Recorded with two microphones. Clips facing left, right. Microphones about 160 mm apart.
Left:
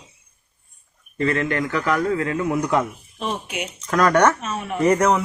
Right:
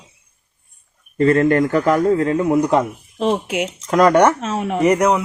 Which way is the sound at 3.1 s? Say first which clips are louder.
Right 9 dB; 90° right.